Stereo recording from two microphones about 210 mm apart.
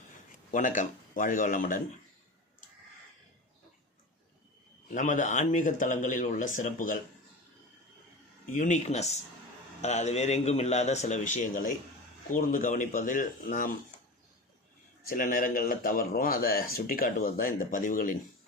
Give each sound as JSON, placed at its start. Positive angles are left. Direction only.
{"t": 0.5, "sound": "speech", "side_deg": 40}
{"t": 4.9, "sound": "speech", "side_deg": 35}
{"t": 8.5, "sound": "speech", "side_deg": 35}
{"t": 15.0, "sound": "speech", "side_deg": 40}